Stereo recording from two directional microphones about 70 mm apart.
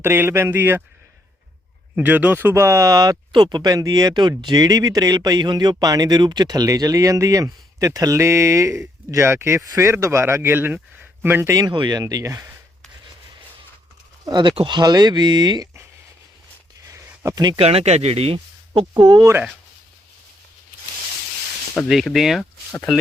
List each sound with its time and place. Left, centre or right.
0.0 s a man's voice: right
2.0 s a man's voice: right
11.3 s a man's voice: right
11.5 s speech: right
14.3 s speech: right
17.3 s speech: right
18.9 s speech: right
19.2 s a man's voice: right
21.8 s speech: centre
22.1 s speech: centre